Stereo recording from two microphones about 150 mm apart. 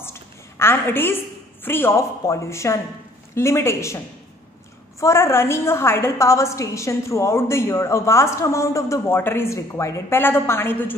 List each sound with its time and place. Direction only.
0.0 s a sound: 15° left (ahead or behind)
1.6 s a woman's voice: 15° left (ahead or behind)
5.0 s a woman's voice: 20° left (ahead or behind)